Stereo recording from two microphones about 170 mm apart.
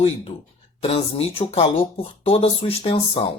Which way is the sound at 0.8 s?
35° left (ahead or behind).